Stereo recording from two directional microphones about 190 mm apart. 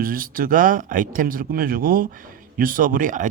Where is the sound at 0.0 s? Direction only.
50° right (ahead or behind).